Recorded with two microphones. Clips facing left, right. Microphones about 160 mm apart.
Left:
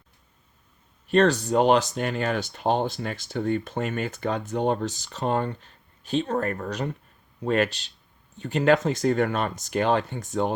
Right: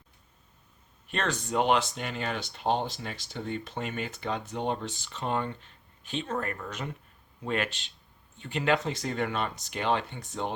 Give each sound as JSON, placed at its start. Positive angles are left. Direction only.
{"t": 1.0, "sound": "speech", "side_deg": 35}